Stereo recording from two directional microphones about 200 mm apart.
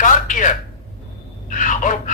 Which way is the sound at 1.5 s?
40° left (ahead or behind).